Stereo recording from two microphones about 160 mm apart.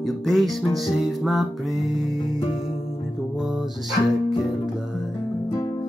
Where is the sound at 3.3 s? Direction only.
Centre (ahead or behind).